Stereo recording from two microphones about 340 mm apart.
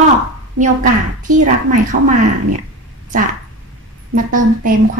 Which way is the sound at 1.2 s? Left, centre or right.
Right.